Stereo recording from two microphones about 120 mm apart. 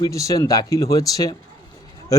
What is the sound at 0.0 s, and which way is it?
A man's voice, 25° left (ahead or behind).